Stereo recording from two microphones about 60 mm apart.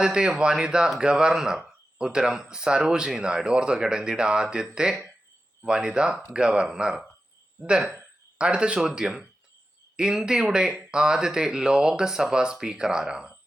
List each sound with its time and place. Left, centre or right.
0.0 s speech: centre